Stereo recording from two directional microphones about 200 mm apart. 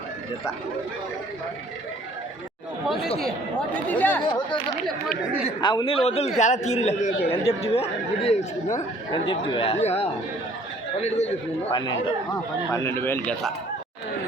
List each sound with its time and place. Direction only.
3.2 s speech: 5° left (ahead or behind)
5.5 s a man's voice: 20° left (ahead or behind)
11.7 s a man's voice: 20° left (ahead or behind)